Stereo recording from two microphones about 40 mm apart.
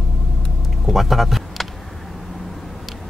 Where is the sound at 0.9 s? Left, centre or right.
Centre.